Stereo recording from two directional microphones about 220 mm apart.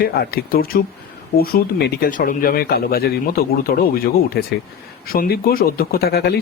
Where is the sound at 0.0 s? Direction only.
45° left (ahead or behind).